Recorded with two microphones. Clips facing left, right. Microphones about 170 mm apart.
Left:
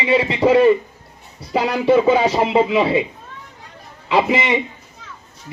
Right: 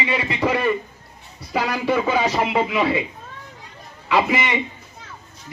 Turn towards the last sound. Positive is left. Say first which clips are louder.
# left 3 dB
turn(degrees=25)  # may be behind; listen again after turning